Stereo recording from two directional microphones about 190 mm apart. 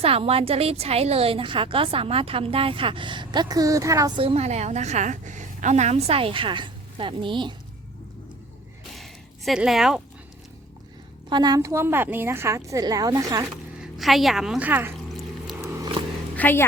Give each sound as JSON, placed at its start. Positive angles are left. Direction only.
{"t": 0.0, "sound": "a woman's voice", "side_deg": -30}
{"t": 4.2, "sound": "a woman's voice", "side_deg": -30}
{"t": 8.9, "sound": "a sound", "side_deg": 0}
{"t": 11.3, "sound": "a woman's voice", "side_deg": -20}
{"t": 13.7, "sound": "a woman's voice", "side_deg": 0}
{"t": 15.6, "sound": "a sound", "side_deg": -15}
{"t": 16.3, "sound": "a woman's voice", "side_deg": 10}